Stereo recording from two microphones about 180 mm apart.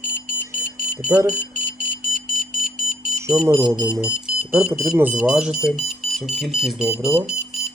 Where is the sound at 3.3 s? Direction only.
5° right (ahead or behind).